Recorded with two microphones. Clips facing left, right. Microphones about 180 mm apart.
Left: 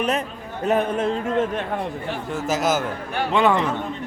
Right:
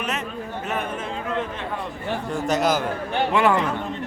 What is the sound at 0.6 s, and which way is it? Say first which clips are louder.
Speech: left 10 dB; 35° left (ahead or behind).